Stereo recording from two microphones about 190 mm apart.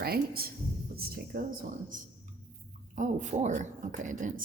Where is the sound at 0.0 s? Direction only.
55° right (ahead or behind).